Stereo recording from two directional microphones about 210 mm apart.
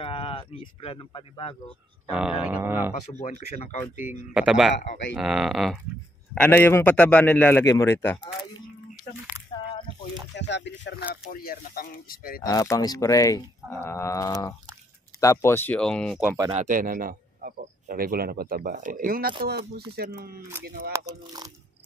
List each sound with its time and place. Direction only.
0.0 s speech: 25° left (ahead or behind)
2.1 s speech: 5° right (ahead or behind)
3.2 s speech: 35° left (ahead or behind)
4.3 s a man's voice: 5° right (ahead or behind)
10.3 s speech: 55° left (ahead or behind)
11.2 s speech: 45° left (ahead or behind)
12.4 s a man's voice: 15° left (ahead or behind)
16.5 s speech: 40° right (ahead or behind)
20.9 s speech: 15° right (ahead or behind)